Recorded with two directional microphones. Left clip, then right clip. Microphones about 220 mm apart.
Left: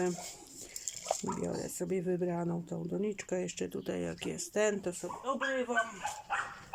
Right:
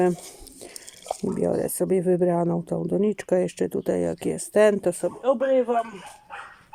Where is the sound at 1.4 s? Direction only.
35° right (ahead or behind).